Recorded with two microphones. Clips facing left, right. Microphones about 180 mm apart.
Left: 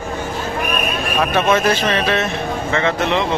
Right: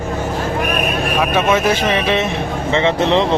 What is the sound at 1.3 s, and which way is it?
Speech, 10° right (ahead or behind).